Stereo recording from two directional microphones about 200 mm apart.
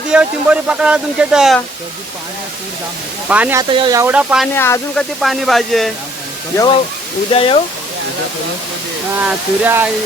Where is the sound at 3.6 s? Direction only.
25° right (ahead or behind); by 4.5 s 5° right (ahead or behind).